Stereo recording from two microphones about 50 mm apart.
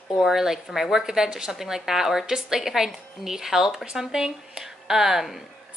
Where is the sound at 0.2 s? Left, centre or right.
Centre.